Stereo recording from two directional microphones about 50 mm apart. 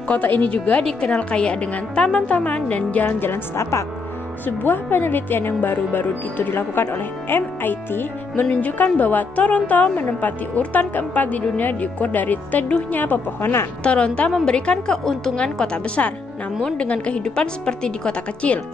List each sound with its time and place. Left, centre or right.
0.1 s a woman's voice: left
4.5 s speech: left
8.5 s speech: left
13.4 s a woman's voice: left
13.8 s a woman's voice: left